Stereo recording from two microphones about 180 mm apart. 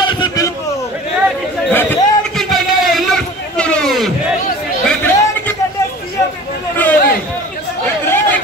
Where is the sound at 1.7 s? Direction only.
10° left (ahead or behind).